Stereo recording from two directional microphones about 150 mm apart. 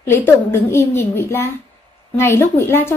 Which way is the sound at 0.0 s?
15° left (ahead or behind).